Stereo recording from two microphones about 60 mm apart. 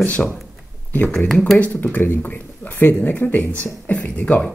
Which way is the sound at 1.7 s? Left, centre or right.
Left.